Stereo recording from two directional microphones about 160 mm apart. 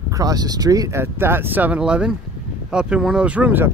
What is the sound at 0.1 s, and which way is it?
Speech, 25° right (ahead or behind).